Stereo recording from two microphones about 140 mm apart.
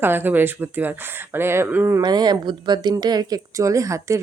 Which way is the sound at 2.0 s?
30° right (ahead or behind).